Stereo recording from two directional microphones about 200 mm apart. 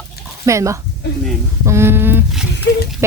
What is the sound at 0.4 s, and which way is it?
Speech, 15° right (ahead or behind).